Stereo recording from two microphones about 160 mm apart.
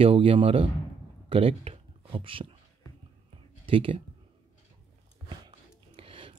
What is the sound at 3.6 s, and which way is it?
Speech, 35° right (ahead or behind).